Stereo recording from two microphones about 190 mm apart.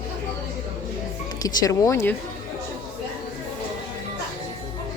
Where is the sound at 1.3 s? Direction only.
20° left (ahead or behind).